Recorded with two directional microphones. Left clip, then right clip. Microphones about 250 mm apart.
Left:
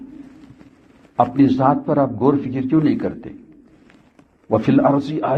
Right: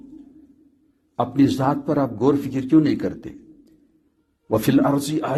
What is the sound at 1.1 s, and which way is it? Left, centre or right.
A man's voice, right.